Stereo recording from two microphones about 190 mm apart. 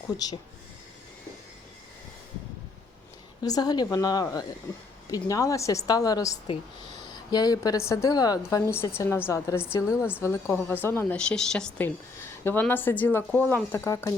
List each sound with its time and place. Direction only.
3.4 s a woman's voice: 20° left (ahead or behind)